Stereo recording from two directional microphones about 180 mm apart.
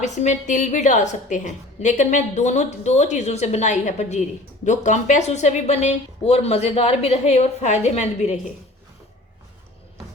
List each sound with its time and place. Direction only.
0.0 s a woman's voice: 40° left (ahead or behind)